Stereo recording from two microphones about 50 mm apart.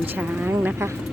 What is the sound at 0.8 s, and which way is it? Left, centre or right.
Speech, right.